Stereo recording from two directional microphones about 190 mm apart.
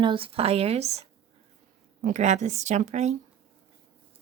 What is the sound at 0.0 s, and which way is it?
A woman's voice, 30° right (ahead or behind).